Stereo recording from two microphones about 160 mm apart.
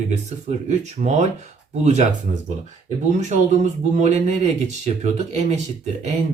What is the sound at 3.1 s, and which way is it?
Speech, 50° right (ahead or behind).